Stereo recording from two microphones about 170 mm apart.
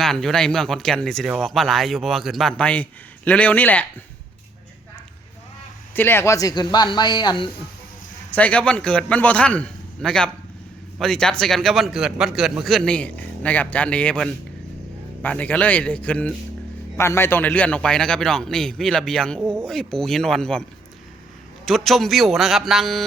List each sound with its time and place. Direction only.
0.0 s a man's voice: centre (ahead or behind)
5.9 s speech: 10° left (ahead or behind)
8.3 s a man's voice: 10° left (ahead or behind)
21.7 s a man's voice: centre (ahead or behind)